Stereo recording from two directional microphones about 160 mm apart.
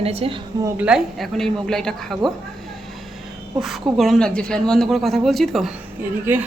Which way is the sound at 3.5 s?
Centre (ahead or behind).